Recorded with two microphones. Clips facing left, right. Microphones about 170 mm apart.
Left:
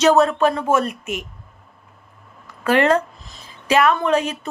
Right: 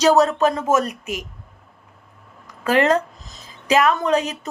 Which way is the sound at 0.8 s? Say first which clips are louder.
Left 1 dB; 30° left (ahead or behind).